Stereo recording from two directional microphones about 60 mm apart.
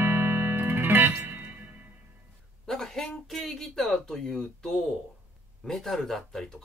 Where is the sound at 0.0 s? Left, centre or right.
Right.